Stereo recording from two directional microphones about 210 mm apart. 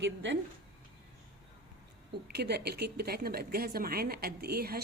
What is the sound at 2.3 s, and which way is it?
A woman's voice, 50° right (ahead or behind).